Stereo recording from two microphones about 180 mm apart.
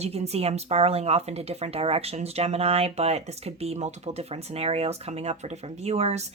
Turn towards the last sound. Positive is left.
turn(degrees=-35)  # may be behind; listen again after turning